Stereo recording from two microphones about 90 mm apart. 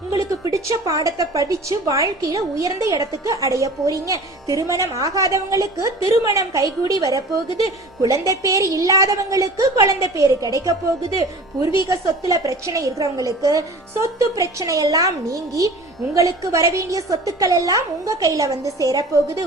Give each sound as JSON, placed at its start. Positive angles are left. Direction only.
{"t": 0.1, "sound": "a woman's voice", "side_deg": -40}
{"t": 11.9, "sound": "a woman's voice", "side_deg": -40}